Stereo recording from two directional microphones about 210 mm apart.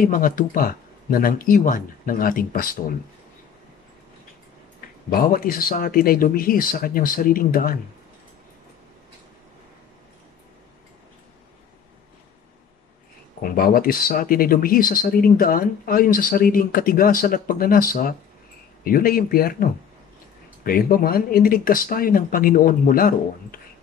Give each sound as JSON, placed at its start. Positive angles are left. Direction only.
{"t": 0.0, "sound": "speech", "side_deg": 40}
{"t": 5.1, "sound": "speech", "side_deg": 45}
{"t": 13.4, "sound": "speech", "side_deg": 45}